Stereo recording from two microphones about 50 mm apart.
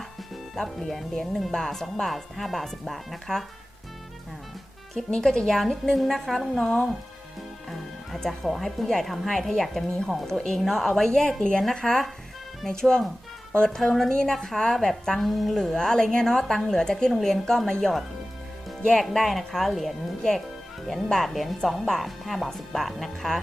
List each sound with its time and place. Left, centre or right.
0.5 s speech: centre
5.1 s a woman's voice: centre
7.7 s a woman's voice: centre
14.1 s a woman's voice: centre